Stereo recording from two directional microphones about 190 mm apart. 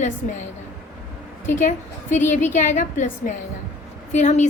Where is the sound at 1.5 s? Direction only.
40° left (ahead or behind).